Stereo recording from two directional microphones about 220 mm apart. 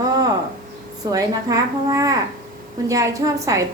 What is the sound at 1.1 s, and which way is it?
A woman's voice, 15° right (ahead or behind).